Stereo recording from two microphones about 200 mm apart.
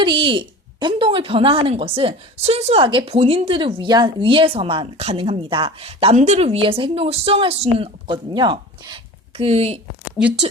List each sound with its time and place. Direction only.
0.0 s speech: 25° right (ahead or behind)
10.2 s speech: 25° left (ahead or behind)